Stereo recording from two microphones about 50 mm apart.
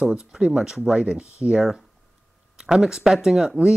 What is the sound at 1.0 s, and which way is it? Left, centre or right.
Speech, right.